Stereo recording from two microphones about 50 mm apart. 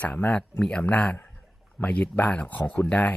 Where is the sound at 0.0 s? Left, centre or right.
Left.